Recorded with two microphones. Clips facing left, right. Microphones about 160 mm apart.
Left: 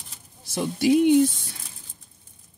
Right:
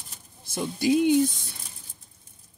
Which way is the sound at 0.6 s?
5° left (ahead or behind).